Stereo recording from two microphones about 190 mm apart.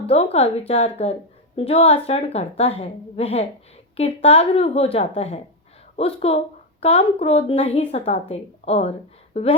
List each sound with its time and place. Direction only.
0.1 s a woman's voice: 35° left (ahead or behind)